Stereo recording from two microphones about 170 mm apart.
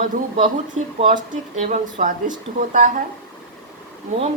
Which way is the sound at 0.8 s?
40° right (ahead or behind).